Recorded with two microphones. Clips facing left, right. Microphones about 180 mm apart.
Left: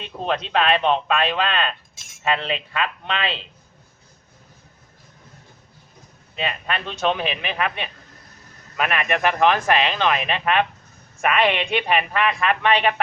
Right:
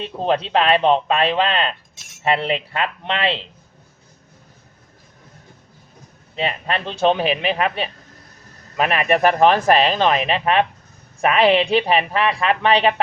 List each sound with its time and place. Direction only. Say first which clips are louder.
0.0 s speech: right 5 dB; 30° right (ahead or behind)
6.3 s speech: right 4 dB; 30° right (ahead or behind)